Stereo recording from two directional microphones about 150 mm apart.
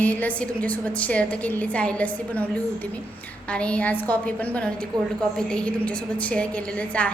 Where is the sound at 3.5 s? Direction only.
10° left (ahead or behind).